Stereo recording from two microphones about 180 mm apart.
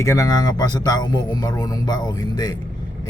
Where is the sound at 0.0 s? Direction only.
20° left (ahead or behind).